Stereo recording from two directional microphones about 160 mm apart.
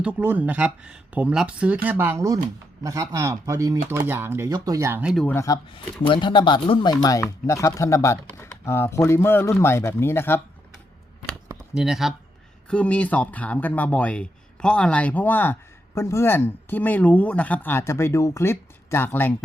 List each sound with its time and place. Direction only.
0.0 s speech: 10° right (ahead or behind)
5.1 s speech: 5° left (ahead or behind)
5.7 s speech: 35° left (ahead or behind); by 10.4 s 15° left (ahead or behind)
11.7 s speech: 5° right (ahead or behind); by 19.3 s 10° left (ahead or behind)